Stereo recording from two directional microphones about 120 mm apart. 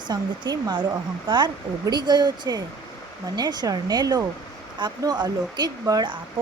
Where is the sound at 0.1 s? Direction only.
35° right (ahead or behind).